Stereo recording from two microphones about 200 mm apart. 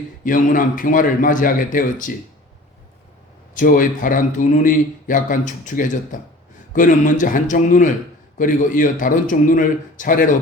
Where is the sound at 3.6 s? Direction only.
40° left (ahead or behind).